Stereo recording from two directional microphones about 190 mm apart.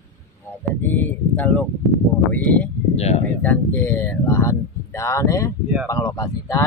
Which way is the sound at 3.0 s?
35° left (ahead or behind).